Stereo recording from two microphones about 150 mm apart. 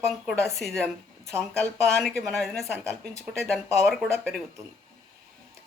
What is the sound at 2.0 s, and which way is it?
Speech, 5° left (ahead or behind).